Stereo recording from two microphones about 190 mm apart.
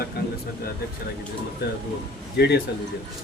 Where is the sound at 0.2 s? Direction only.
55° left (ahead or behind).